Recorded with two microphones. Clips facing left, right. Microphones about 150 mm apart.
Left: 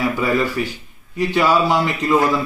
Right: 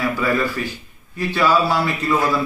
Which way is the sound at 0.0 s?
15° left (ahead or behind).